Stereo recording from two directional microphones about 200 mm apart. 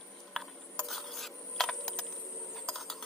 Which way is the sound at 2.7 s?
Centre (ahead or behind).